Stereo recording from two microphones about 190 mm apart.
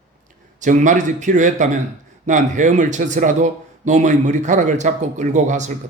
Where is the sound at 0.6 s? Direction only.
40° right (ahead or behind).